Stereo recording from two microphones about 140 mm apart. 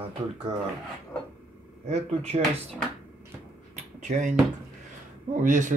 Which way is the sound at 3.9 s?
60° right (ahead or behind).